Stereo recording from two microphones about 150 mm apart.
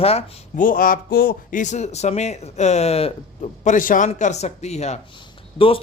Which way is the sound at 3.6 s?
60° left (ahead or behind).